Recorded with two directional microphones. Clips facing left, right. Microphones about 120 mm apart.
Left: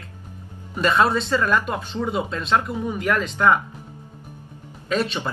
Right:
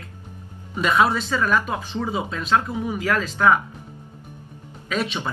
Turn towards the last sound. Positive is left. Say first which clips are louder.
# left 2 dB
turn(degrees=0)  # may be behind; listen again after turning